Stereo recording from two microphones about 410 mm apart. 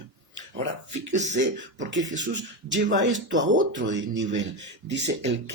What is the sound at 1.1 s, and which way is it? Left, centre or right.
Speech, right.